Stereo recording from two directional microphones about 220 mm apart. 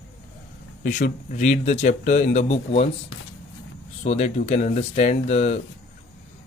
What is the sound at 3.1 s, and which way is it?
Speech, 70° left (ahead or behind).